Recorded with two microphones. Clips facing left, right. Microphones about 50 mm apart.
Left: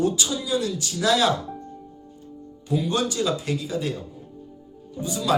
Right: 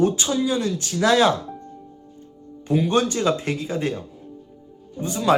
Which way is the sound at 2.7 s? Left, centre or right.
Right.